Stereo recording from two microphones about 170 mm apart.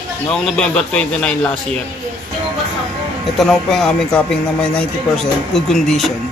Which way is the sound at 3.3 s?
Centre (ahead or behind).